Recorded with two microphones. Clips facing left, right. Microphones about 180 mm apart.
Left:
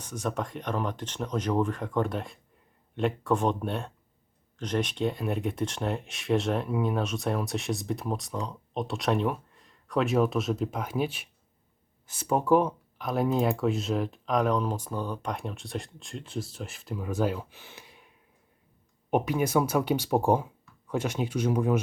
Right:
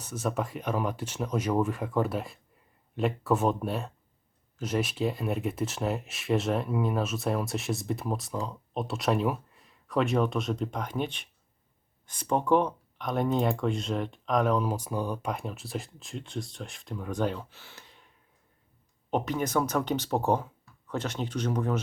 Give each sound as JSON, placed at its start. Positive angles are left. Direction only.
{"t": 0.0, "sound": "speech", "side_deg": -5}
{"t": 19.1, "sound": "speech", "side_deg": 10}